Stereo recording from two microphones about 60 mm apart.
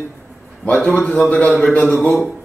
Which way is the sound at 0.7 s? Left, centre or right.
Left.